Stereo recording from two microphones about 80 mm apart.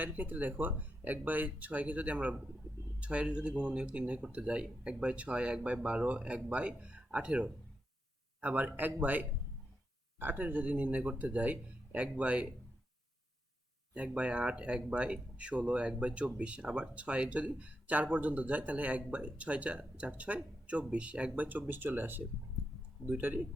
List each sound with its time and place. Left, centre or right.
0.0 s speech: right
13.9 s speech: centre